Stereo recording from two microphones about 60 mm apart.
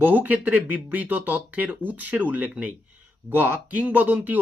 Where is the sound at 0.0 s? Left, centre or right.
Right.